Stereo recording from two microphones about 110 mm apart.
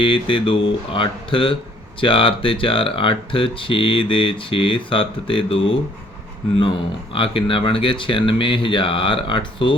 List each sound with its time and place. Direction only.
0.0 s speech: 50° left (ahead or behind)
7.1 s speech: 50° left (ahead or behind)